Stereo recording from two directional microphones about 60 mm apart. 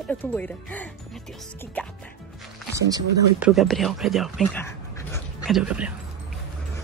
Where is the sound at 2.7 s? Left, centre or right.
Right.